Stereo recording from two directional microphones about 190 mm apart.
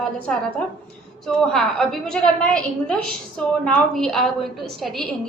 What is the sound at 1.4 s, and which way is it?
A woman's voice, centre (ahead or behind).